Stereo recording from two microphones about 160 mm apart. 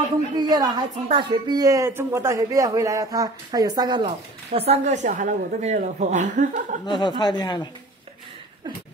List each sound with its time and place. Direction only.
0.4 s speech: 25° right (ahead or behind); by 6.8 s 50° right (ahead or behind)
6.9 s speech: 30° left (ahead or behind)